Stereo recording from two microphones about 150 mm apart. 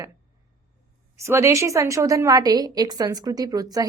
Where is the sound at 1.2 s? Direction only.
20° right (ahead or behind).